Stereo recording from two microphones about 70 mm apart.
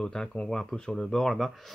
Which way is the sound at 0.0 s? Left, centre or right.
Centre.